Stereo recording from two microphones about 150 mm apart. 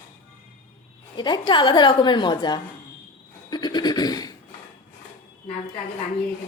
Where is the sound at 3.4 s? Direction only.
30° left (ahead or behind).